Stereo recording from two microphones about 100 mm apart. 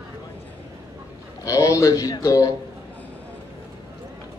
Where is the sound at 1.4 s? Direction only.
35° left (ahead or behind).